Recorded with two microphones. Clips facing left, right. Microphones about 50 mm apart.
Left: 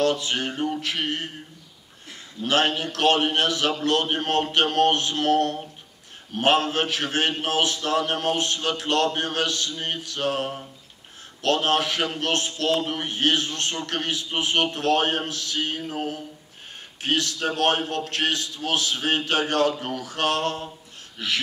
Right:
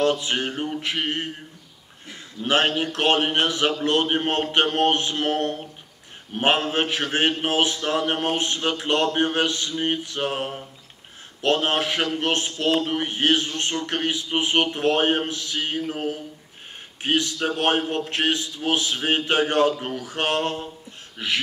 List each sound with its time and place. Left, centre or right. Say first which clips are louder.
0.0 s a man's voice: right 1 dB; right